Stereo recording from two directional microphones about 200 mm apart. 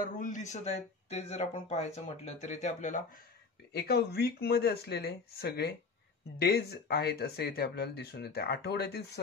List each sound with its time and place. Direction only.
0.0 s speech: 40° left (ahead or behind)
3.7 s speech: 50° left (ahead or behind)